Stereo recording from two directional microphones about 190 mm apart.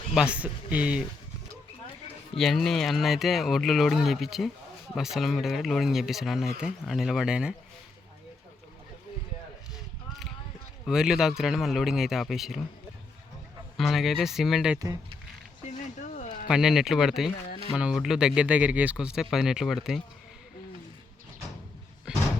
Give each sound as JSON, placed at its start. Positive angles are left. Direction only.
{"t": 0.1, "sound": "speech", "side_deg": -5}
{"t": 2.4, "sound": "speech", "side_deg": 0}
{"t": 10.8, "sound": "speech", "side_deg": -5}
{"t": 13.7, "sound": "speech", "side_deg": 0}
{"t": 16.0, "sound": "a sound", "side_deg": 40}
{"t": 16.5, "sound": "speech", "side_deg": 0}
{"t": 22.1, "sound": "a sound", "side_deg": -5}